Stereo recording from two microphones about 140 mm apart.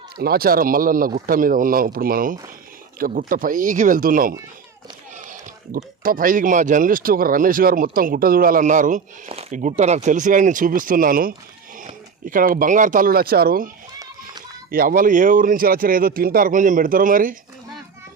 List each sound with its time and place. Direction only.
0.2 s speech: 90° right
3.0 s speech: 80° right
9.3 s speech: 55° right (ahead or behind); by 13.7 s 90° right
14.7 s speech: 85° right